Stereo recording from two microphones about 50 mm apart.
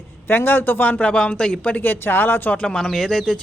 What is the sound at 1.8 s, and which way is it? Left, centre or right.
Speech, left.